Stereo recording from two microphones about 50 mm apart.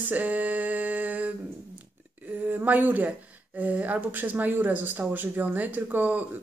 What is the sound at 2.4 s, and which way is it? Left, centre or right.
Speech, right.